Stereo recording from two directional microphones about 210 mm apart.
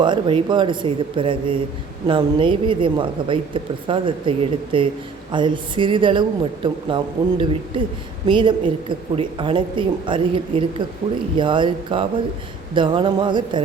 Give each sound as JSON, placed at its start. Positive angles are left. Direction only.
{"t": 0.0, "sound": "a woman's voice", "side_deg": -25}